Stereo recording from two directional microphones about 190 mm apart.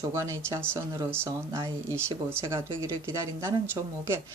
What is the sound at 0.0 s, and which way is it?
Speech, 15° right (ahead or behind).